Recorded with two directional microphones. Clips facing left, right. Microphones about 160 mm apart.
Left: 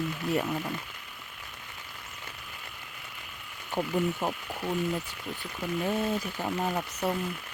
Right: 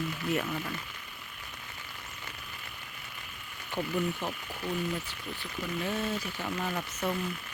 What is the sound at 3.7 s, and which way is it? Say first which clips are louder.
Speech: left 3 dB; 40° left (ahead or behind).